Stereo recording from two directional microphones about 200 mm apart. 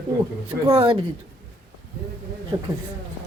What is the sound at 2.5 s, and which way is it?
Speech, 20° right (ahead or behind).